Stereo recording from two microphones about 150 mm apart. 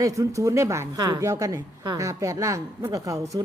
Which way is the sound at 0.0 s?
20° right (ahead or behind).